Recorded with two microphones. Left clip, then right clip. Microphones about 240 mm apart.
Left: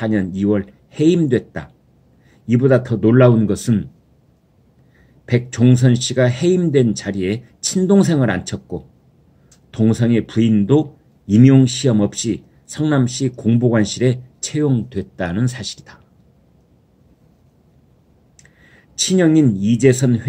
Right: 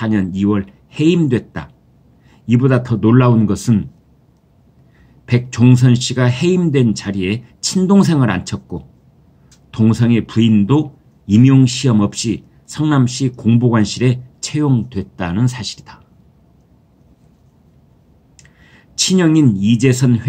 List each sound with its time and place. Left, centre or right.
0.0 s a man's voice: centre
5.2 s a man's voice: centre
18.7 s speech: centre